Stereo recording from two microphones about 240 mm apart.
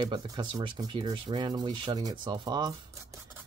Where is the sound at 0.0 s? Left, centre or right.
Centre.